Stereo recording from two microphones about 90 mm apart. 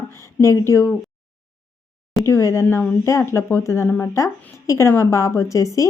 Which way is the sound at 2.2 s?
35° left (ahead or behind).